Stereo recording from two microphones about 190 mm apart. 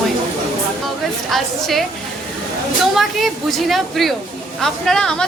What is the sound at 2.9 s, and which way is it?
A woman's voice, centre (ahead or behind).